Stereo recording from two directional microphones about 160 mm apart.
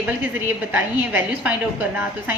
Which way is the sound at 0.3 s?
10° right (ahead or behind).